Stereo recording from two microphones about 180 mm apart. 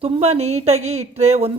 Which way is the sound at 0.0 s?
35° right (ahead or behind).